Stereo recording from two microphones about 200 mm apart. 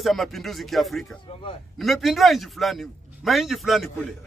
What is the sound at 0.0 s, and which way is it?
A man's voice, centre (ahead or behind).